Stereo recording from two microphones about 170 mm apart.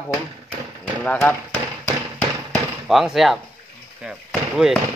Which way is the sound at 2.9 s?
Centre (ahead or behind).